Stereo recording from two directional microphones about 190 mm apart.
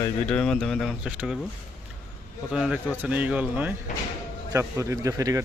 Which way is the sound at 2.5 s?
5° right (ahead or behind).